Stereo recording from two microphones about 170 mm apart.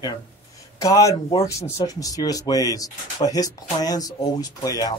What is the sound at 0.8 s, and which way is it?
Speech, 20° left (ahead or behind).